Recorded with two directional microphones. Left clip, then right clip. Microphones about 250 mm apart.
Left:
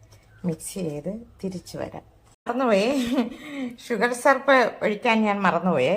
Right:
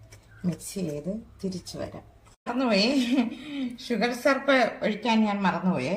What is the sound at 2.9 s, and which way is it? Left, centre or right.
Speech, centre.